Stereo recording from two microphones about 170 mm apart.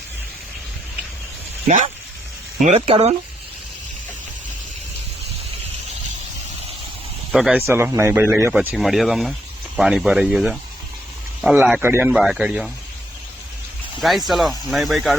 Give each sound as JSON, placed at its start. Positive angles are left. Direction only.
{"t": 1.6, "sound": "speech", "side_deg": -45}
{"t": 7.3, "sound": "speech", "side_deg": -5}
{"t": 7.7, "sound": "speech", "side_deg": -15}
{"t": 14.0, "sound": "speech", "side_deg": 0}